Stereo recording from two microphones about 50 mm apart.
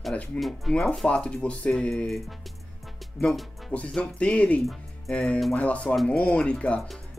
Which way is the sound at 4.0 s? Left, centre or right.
Left.